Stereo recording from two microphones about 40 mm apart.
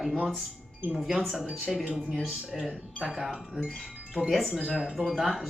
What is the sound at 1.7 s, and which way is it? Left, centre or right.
Speech, centre.